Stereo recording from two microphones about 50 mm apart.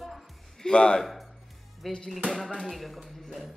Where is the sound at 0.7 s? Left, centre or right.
Centre.